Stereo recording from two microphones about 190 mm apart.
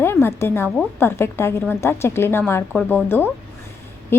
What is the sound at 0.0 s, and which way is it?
A woman's voice, 10° left (ahead or behind).